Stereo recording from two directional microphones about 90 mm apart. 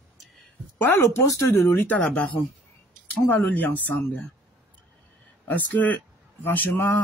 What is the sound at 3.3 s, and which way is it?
Speech, 15° left (ahead or behind).